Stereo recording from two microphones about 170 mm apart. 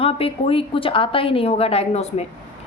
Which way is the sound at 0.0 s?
35° left (ahead or behind).